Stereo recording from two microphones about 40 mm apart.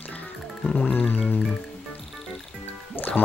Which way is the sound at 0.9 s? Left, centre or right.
Left.